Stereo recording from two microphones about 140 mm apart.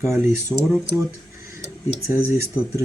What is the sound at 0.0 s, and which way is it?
Speech, 20° right (ahead or behind).